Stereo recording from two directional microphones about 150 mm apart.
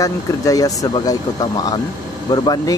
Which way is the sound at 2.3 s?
25° left (ahead or behind).